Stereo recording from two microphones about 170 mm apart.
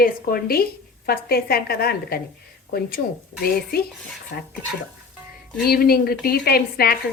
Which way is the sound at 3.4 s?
65° left (ahead or behind).